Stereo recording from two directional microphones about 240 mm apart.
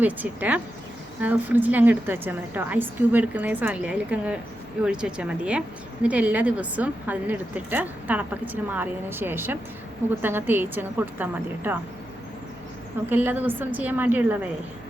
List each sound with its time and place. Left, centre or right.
0.0 s a woman's voice: centre
13.1 s a woman's voice: centre